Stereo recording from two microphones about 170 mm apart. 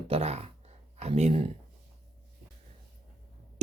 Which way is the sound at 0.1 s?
35° right (ahead or behind).